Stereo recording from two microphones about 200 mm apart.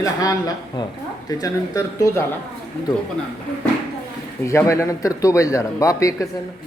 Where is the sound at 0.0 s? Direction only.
20° left (ahead or behind).